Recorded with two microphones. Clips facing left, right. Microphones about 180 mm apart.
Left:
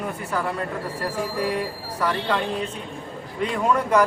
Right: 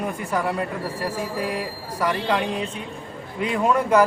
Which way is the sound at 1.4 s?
10° right (ahead or behind).